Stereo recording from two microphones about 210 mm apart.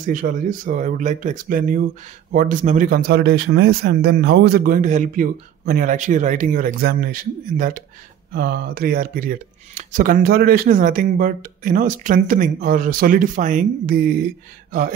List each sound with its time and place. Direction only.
0.0 s speech: 40° right (ahead or behind)